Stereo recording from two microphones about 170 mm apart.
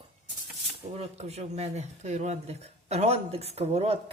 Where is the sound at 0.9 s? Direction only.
40° right (ahead or behind).